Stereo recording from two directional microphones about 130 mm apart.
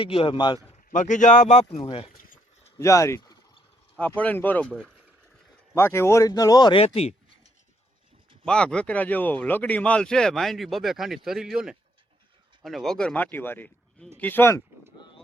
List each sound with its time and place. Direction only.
0.0 s a man's voice: 45° left (ahead or behind)
0.9 s speech: 75° left (ahead or behind)
1.8 s a man's voice: 45° left (ahead or behind)
2.7 s speech: 25° left (ahead or behind)
3.9 s speech: 10° left (ahead or behind)
5.7 s speech: 20° left (ahead or behind)
6.8 s a sound: 50° left (ahead or behind)
8.4 s speech: 10° left (ahead or behind)
14.9 s a sound: 35° left (ahead or behind)